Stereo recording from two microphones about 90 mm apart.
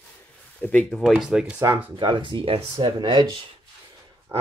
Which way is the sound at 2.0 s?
65° right (ahead or behind).